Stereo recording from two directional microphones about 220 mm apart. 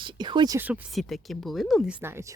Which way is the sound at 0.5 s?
5° right (ahead or behind).